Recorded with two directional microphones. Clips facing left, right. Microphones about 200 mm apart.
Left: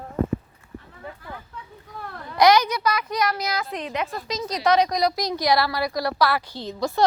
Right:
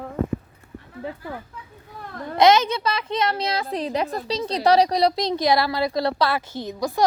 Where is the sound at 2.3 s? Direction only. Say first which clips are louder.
Right 1 dB; 25° right (ahead or behind).